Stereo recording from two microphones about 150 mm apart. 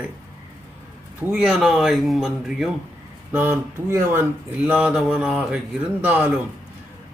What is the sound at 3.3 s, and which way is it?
Speech, 15° right (ahead or behind).